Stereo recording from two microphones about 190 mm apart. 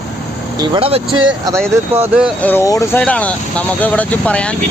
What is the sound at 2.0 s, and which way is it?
Speech, 5° right (ahead or behind).